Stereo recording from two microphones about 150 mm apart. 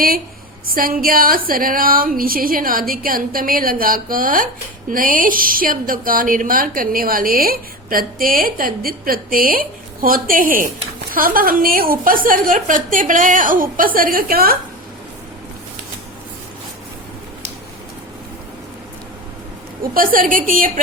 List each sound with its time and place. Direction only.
0.7 s a woman's voice: 70° right (ahead or behind)
19.9 s a woman's voice: 70° right (ahead or behind)